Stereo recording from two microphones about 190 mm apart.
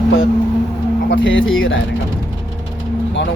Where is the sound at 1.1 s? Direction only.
80° left.